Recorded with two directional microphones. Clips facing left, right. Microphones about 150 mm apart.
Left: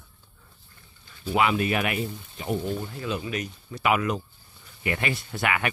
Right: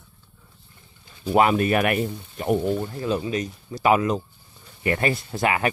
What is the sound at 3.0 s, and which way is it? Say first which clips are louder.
Speech: right 5 dB; 30° right (ahead or behind).